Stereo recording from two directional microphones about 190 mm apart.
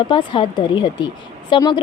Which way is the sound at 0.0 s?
25° left (ahead or behind).